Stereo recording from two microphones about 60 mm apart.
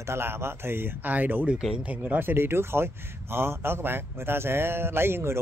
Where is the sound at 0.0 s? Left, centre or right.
Right.